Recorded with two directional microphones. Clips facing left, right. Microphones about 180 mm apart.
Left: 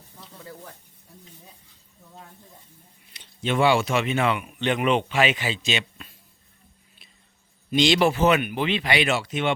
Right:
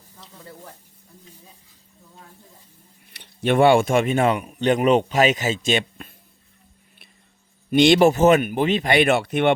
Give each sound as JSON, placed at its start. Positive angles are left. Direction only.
{"t": 3.1, "sound": "speech", "side_deg": -60}
{"t": 7.7, "sound": "speech", "side_deg": -55}